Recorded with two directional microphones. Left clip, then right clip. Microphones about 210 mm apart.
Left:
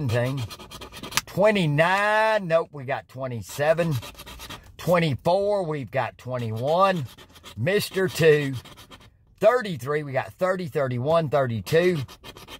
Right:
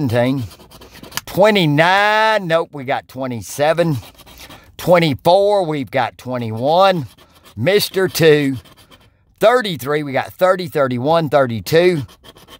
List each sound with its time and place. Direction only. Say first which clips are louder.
0.1 s speech: right 7 dB; 45° right (ahead or behind)